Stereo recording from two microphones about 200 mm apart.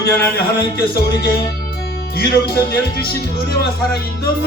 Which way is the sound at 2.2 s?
50° left (ahead or behind).